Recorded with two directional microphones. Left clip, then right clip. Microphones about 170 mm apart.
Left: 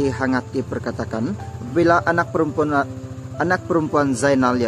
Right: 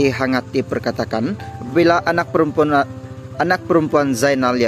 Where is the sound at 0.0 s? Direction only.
15° right (ahead or behind).